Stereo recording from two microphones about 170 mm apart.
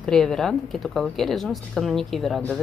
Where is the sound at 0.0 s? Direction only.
5° left (ahead or behind).